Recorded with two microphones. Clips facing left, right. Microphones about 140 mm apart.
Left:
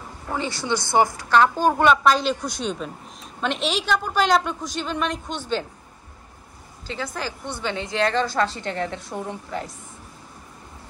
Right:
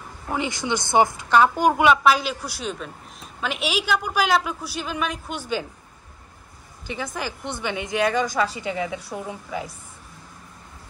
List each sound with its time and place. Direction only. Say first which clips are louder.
0.3 s a woman's voice: even; 15° right (ahead or behind)
7.2 s a woman's voice: right 1 dB; 15° right (ahead or behind)